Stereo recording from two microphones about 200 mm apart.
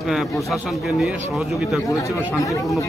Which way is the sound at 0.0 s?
Centre (ahead or behind).